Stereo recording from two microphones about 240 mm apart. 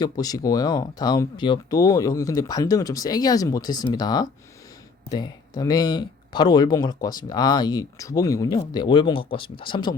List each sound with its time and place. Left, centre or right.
0.0 s speech: centre